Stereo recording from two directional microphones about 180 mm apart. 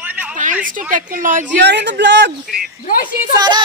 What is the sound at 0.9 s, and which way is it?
Speech, 45° right (ahead or behind).